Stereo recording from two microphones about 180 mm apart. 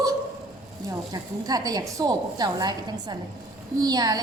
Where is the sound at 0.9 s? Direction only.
20° right (ahead or behind).